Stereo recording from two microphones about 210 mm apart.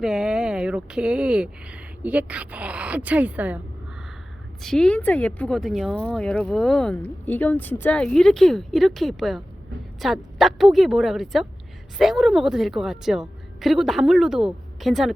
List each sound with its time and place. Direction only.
0.0 s speech: centre (ahead or behind)
4.6 s speech: 5° left (ahead or behind)